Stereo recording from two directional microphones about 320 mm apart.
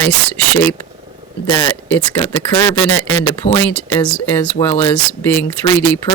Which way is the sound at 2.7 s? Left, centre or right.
Left.